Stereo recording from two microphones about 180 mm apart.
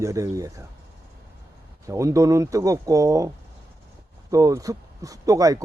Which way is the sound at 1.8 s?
15° right (ahead or behind).